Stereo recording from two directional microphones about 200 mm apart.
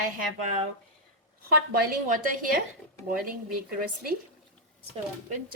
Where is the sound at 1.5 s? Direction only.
50° right (ahead or behind).